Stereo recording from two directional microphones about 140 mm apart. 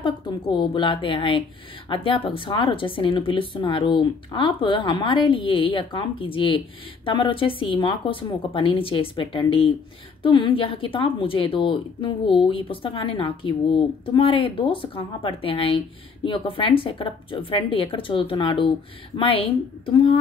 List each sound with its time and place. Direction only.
0.0 s speech: 35° left (ahead or behind)